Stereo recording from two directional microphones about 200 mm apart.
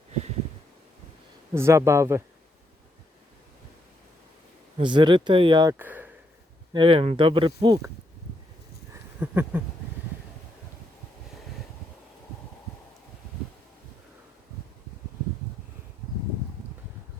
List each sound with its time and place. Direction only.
1.5 s speech: 15° right (ahead or behind)
4.8 s speech: 25° right (ahead or behind)
6.7 s speech: 25° right (ahead or behind)
8.9 s a sound: 10° right (ahead or behind)